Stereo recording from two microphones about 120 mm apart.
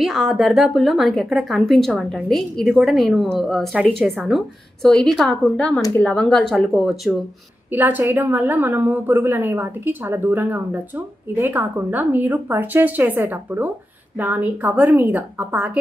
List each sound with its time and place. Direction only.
0.0 s a woman's voice: centre (ahead or behind)
7.7 s a woman's voice: 15° right (ahead or behind)